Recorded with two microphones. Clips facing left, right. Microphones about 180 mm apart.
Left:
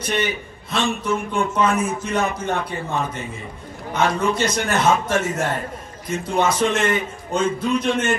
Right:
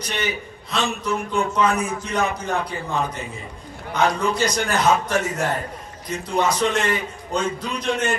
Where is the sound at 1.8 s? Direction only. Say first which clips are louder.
Left 2 dB; 25° left (ahead or behind).